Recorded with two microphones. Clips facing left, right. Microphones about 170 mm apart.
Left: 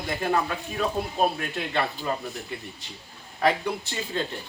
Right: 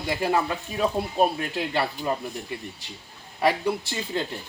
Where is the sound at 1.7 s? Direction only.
15° right (ahead or behind).